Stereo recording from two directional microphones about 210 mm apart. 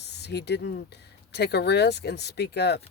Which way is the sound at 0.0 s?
55° left (ahead or behind).